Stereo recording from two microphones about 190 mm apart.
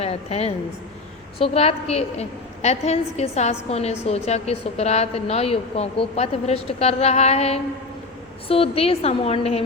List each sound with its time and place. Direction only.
0.0 s a woman's voice: 35° left (ahead or behind)